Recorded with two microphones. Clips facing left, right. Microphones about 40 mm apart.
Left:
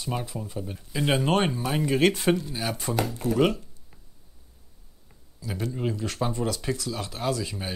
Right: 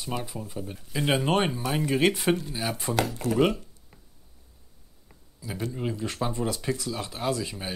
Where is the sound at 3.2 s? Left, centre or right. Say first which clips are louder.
Left 4 dB; right.